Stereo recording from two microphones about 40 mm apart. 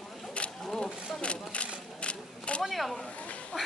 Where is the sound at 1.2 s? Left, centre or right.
Left.